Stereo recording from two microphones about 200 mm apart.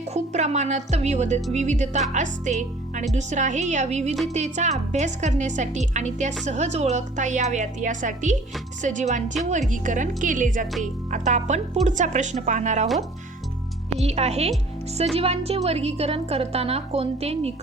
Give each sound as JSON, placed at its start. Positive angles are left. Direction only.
{"t": 0.0, "sound": "a woman's voice", "side_deg": -35}
{"t": 14.0, "sound": "a woman's voice", "side_deg": -30}